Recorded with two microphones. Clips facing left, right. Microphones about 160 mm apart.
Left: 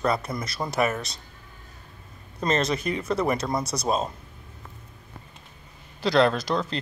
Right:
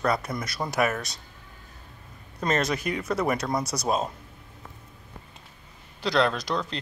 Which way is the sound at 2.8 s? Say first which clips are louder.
Left 1 dB; 25° left (ahead or behind).